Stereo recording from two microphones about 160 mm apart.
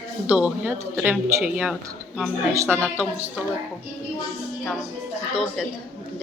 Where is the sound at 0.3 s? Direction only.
10° right (ahead or behind).